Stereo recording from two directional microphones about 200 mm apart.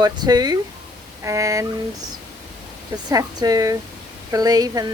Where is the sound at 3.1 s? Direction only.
20° right (ahead or behind).